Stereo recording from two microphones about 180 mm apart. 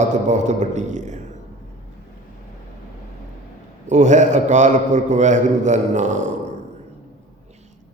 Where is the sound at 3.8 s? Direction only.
40° right (ahead or behind).